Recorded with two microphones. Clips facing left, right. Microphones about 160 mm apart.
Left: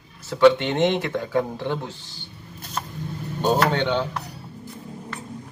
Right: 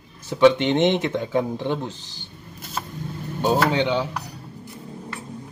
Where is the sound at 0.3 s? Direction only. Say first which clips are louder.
Even; 20° right (ahead or behind).